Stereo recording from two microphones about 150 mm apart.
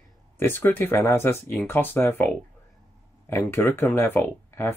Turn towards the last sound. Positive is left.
turn(degrees=15)  # may be behind; listen again after turning